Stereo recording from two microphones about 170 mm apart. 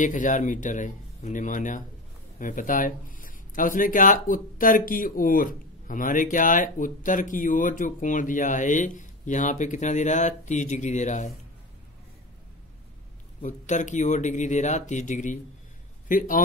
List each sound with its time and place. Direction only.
0.0 s speech: 50° left (ahead or behind)
13.4 s speech: 45° left (ahead or behind)